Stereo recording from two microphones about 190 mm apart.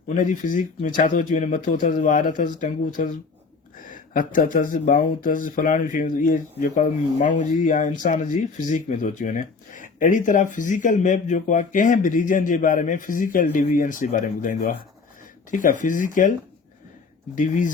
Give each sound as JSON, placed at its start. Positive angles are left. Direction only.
{"t": 0.1, "sound": "speech", "side_deg": 40}
{"t": 17.3, "sound": "speech", "side_deg": 40}